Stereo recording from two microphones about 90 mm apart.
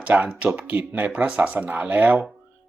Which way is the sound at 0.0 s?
15° right (ahead or behind).